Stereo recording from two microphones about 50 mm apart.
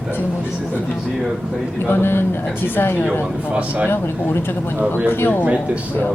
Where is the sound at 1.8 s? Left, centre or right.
Left.